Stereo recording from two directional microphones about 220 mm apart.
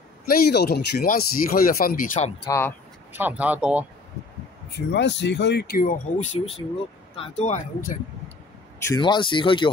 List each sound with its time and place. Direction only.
0.3 s speech: 45° left (ahead or behind)
2.4 s speech: 10° left (ahead or behind)
3.1 s speech: 10° right (ahead or behind)
4.7 s speech: 50° left (ahead or behind); by 8.0 s 35° left (ahead or behind)
8.8 s speech: 20° left (ahead or behind)